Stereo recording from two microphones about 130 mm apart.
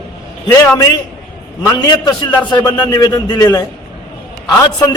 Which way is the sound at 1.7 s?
35° left (ahead or behind).